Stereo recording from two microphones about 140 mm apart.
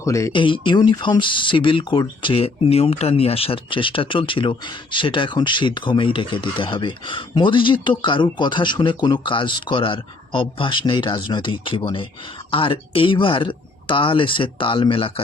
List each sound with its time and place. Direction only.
0.0 s speech: 20° left (ahead or behind)
0.3 s speech: 35° left (ahead or behind)